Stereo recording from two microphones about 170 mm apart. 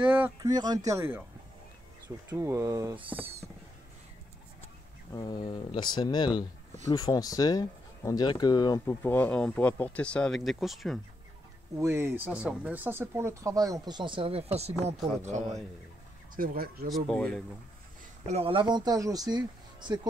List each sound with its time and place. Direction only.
0.0 s speech: 10° right (ahead or behind)
0.4 s speech: 25° right (ahead or behind)
5.1 s speech: 25° left (ahead or behind); by 11.0 s centre (ahead or behind)
11.8 s a man's voice: 15° right (ahead or behind); by 15.6 s 40° right (ahead or behind)
16.3 s speech: 55° right (ahead or behind)
16.9 s speech: 5° left (ahead or behind)
18.3 s speech: 30° right (ahead or behind)